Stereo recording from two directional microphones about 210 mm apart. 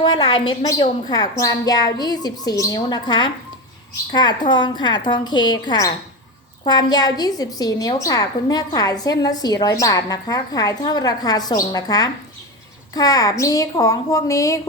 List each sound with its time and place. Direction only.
0.0 s a woman's voice: 20° left (ahead or behind)